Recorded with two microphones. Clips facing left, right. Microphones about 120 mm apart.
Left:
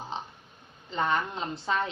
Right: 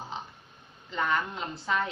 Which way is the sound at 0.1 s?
25° left (ahead or behind).